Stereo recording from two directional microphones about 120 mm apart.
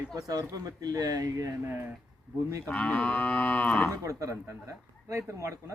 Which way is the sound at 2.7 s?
10° left (ahead or behind).